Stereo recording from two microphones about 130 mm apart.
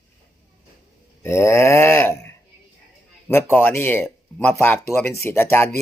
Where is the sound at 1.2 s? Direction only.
20° left (ahead or behind).